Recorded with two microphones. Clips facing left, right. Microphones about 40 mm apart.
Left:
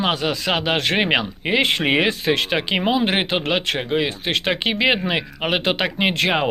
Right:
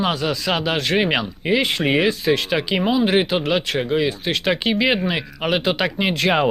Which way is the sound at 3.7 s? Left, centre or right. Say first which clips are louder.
Right 1 dB; centre.